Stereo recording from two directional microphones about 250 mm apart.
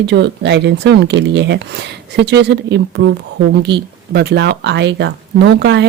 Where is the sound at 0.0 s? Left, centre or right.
Right.